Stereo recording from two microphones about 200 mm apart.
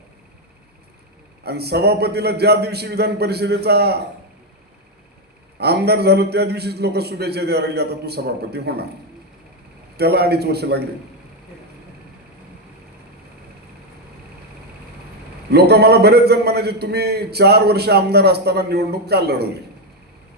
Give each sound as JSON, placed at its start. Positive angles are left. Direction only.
{"t": 1.5, "sound": "a man's voice", "side_deg": -55}
{"t": 5.5, "sound": "a man's voice", "side_deg": -55}
{"t": 10.0, "sound": "a man's voice", "side_deg": -55}
{"t": 15.5, "sound": "a man's voice", "side_deg": -55}